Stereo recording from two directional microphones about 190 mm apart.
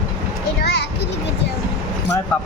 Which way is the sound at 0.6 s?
60° left (ahead or behind).